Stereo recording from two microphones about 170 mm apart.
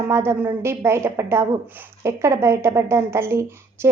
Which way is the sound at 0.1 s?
15° right (ahead or behind).